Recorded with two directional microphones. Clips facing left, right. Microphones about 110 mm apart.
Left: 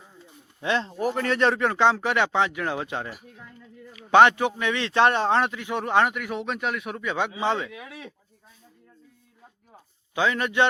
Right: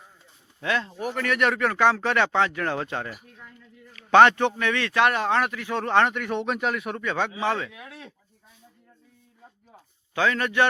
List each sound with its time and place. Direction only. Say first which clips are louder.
0.6 s speech: left 2 dB; 25° left (ahead or behind); by 7.0 s centre (ahead or behind)
7.0 s speech: left 1 dB; 15° left (ahead or behind)
7.7 s speech: left 3 dB; centre (ahead or behind)
10.2 s speech: even; 15° left (ahead or behind)